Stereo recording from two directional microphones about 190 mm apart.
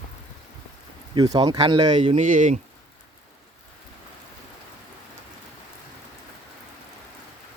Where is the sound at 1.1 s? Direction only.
20° right (ahead or behind).